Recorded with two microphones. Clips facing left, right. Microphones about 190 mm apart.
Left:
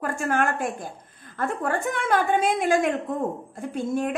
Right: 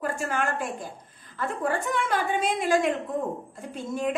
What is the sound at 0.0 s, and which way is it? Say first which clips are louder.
A woman's voice: left 4 dB; 50° left (ahead or behind).